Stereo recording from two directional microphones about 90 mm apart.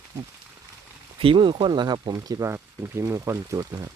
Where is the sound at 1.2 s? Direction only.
75° right (ahead or behind).